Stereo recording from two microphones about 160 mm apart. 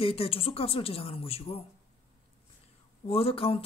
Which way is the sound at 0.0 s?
35° left (ahead or behind).